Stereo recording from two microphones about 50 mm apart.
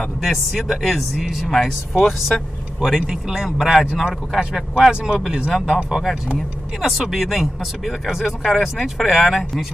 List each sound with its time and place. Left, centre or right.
0.2 s speech: centre
3.8 s speech: centre